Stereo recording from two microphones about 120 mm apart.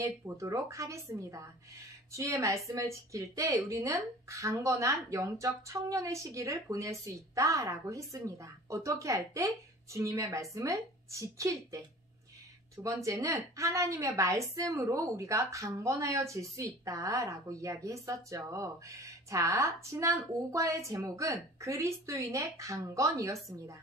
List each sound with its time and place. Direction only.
0.0 s a woman's voice: 25° right (ahead or behind)
12.7 s a woman's voice: 25° right (ahead or behind)